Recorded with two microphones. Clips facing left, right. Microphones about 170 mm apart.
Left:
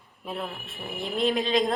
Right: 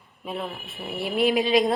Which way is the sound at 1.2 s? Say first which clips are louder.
Right 4 dB; 10° right (ahead or behind).